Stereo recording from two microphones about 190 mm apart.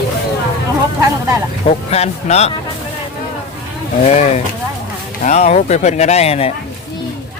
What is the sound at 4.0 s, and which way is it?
Speech, 35° left (ahead or behind).